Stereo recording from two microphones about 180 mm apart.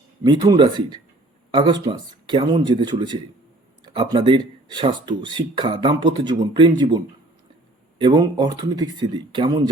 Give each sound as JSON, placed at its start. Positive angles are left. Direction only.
{"t": 0.3, "sound": "speech", "side_deg": -25}